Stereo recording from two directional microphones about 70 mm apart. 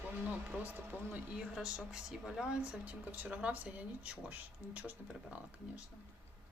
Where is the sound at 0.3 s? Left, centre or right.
Right.